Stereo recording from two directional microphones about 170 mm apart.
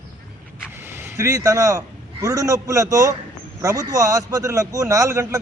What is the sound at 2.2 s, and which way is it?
A man's voice, 20° right (ahead or behind).